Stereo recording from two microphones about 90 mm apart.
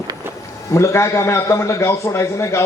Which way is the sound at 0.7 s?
35° left (ahead or behind).